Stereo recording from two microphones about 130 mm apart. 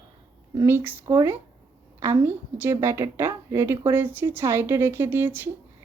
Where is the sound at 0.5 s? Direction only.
20° right (ahead or behind).